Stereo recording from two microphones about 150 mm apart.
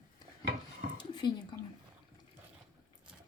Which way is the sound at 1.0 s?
30° left (ahead or behind).